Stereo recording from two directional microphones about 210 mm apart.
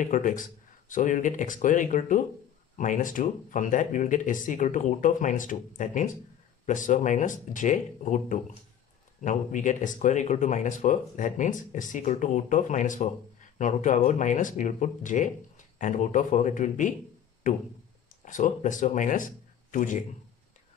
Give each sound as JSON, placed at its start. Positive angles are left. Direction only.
{"t": 0.0, "sound": "speech", "side_deg": 40}